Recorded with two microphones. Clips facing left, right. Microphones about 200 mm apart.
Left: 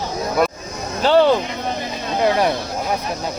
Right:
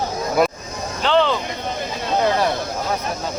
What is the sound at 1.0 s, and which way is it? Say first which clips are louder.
Speech: left 4 dB; 40° left (ahead or behind).